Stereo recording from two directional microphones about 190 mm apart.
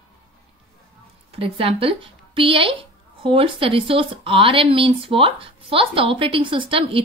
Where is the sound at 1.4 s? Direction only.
30° right (ahead or behind).